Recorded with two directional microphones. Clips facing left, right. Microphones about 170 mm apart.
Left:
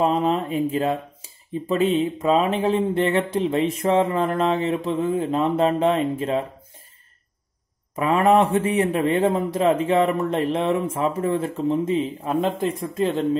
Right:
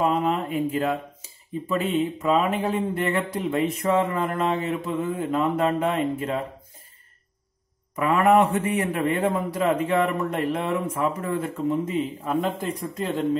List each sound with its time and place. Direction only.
0.0 s a sound: 30° left (ahead or behind)
1.7 s a man's voice: 25° left (ahead or behind)
7.9 s a man's voice: 25° left (ahead or behind)